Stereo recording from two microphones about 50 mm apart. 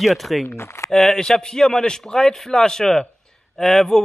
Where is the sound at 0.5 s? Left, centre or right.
Left.